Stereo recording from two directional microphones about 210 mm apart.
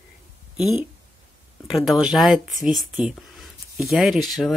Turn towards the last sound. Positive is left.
turn(degrees=0)  # may be behind; listen again after turning